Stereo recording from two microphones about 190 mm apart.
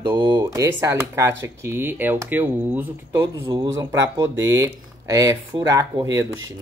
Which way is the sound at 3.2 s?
20° right (ahead or behind).